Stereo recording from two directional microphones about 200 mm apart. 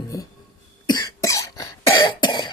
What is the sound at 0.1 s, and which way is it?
Cough, 15° left (ahead or behind).